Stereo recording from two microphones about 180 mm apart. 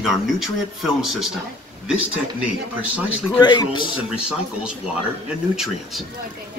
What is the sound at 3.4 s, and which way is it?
Speech, 25° left (ahead or behind).